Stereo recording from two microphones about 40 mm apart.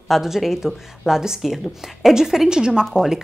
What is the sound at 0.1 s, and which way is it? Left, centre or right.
A woman's voice, centre.